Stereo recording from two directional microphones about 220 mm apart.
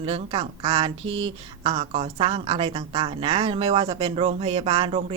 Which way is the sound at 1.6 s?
25° right (ahead or behind).